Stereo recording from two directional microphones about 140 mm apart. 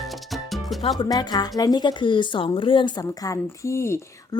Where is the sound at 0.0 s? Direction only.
Centre (ahead or behind).